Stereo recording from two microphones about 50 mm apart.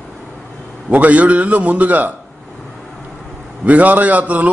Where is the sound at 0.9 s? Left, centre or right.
Right.